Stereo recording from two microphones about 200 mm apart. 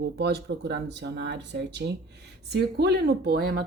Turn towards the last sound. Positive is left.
turn(degrees=-55)  # may be behind; listen again after turning